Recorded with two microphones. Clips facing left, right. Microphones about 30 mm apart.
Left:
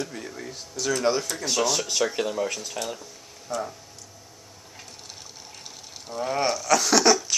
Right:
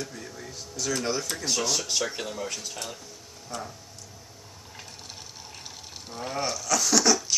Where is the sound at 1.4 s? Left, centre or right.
Left.